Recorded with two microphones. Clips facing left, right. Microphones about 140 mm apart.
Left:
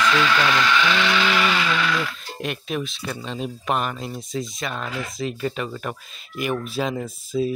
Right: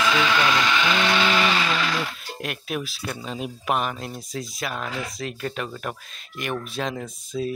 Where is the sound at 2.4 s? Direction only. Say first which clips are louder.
Left 3 dB; 5° right (ahead or behind).